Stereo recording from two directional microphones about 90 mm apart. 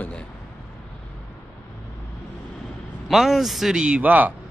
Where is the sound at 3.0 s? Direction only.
Centre (ahead or behind); by 4.3 s 20° right (ahead or behind).